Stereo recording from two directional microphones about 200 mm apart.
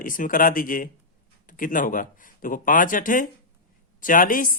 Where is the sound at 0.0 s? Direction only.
45° left (ahead or behind).